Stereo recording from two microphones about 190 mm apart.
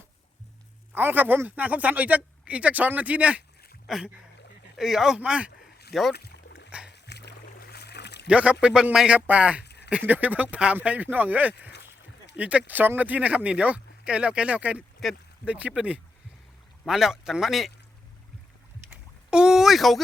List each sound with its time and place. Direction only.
0.9 s speech: 10° right (ahead or behind)
6.1 s rowboat: 60° left (ahead or behind)
6.7 s music: 5° right (ahead or behind)
6.9 s boat: 65° left (ahead or behind)
8.3 s speech: 5° right (ahead or behind)
19.3 s speech: 5° right (ahead or behind)